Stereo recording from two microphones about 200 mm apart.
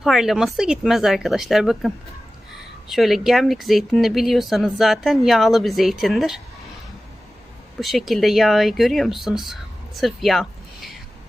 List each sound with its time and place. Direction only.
0.0 s speech: centre (ahead or behind)
2.9 s speech: centre (ahead or behind)
7.8 s speech: centre (ahead or behind)